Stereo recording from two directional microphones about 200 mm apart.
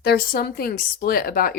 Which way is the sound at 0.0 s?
50° left (ahead or behind).